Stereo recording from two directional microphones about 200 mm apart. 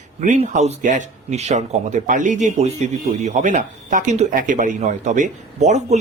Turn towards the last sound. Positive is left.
turn(degrees=-35)  # may be behind; listen again after turning